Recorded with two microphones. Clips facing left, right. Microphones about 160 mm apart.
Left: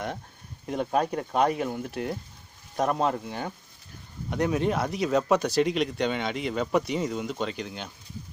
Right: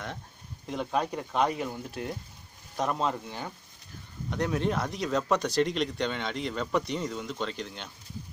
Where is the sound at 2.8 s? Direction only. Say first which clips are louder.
Left 4 dB; 50° left (ahead or behind).